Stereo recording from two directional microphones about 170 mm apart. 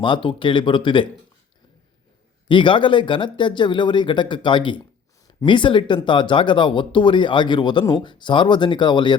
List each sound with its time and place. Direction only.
0.0 s speech: 30° left (ahead or behind)
2.5 s speech: 30° left (ahead or behind)